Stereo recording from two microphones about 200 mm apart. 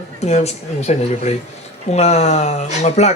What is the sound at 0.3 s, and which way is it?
Speech, 35° left (ahead or behind).